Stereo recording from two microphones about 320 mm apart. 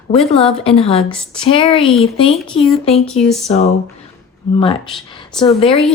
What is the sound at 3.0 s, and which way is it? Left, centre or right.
Speech, centre.